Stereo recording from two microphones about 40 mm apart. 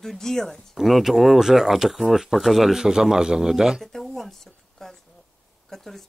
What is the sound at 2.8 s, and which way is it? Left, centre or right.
Speech, centre.